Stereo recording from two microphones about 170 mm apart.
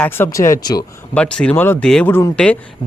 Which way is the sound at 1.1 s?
5° left (ahead or behind).